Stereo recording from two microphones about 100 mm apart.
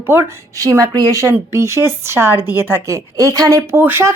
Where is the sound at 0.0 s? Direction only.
20° right (ahead or behind).